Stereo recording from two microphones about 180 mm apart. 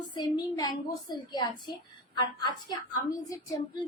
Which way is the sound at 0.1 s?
25° left (ahead or behind).